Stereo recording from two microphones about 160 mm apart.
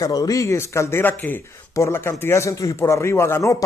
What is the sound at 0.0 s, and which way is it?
Speech, 20° left (ahead or behind).